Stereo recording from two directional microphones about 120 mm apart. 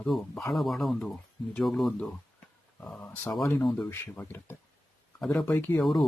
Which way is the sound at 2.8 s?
15° left (ahead or behind).